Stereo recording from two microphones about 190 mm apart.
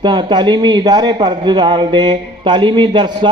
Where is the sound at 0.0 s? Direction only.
25° right (ahead or behind).